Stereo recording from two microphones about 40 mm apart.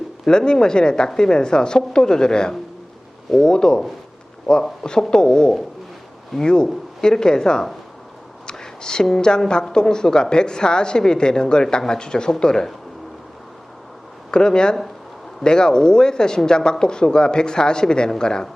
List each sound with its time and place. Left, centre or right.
0.3 s a woman's voice: centre
4.5 s a man's voice: centre
4.8 s a woman's voice: centre
14.3 s a woman's voice: centre